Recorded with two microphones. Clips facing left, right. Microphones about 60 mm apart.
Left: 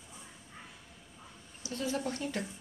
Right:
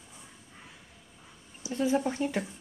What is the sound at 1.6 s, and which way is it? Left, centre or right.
Speech, centre.